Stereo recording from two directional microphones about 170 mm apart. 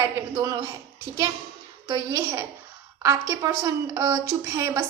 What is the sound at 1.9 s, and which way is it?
A man's voice, 20° right (ahead or behind).